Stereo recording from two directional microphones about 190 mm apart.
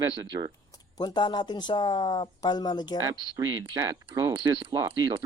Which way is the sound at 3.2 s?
25° right (ahead or behind).